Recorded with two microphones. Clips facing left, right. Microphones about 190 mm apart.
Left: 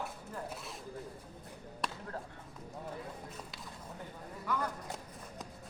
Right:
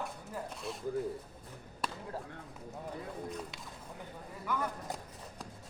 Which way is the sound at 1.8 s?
Centre (ahead or behind).